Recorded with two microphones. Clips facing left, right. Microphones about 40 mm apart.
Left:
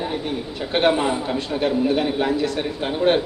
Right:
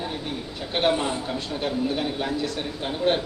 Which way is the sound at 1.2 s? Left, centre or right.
Left.